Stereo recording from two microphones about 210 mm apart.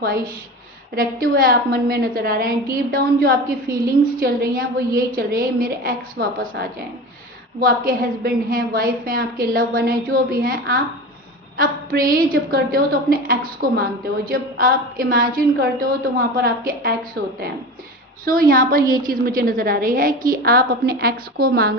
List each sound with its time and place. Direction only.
0.0 s a woman's voice: 45° right (ahead or behind)